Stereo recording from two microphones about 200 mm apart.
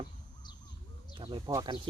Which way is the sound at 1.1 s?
25° right (ahead or behind).